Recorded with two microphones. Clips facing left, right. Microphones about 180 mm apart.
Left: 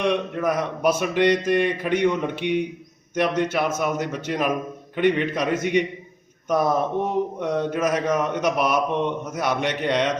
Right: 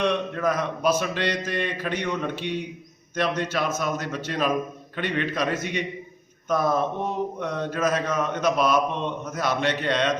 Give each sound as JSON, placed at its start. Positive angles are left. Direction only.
{"t": 0.0, "sound": "speech", "side_deg": 15}